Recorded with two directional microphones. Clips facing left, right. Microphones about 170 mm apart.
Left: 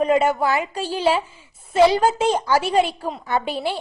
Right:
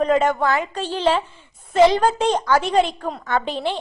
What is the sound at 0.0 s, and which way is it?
A woman's voice, 10° left (ahead or behind).